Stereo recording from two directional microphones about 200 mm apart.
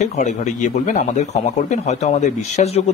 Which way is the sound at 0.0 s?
35° left (ahead or behind).